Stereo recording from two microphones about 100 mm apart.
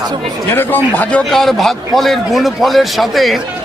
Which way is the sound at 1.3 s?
Centre (ahead or behind).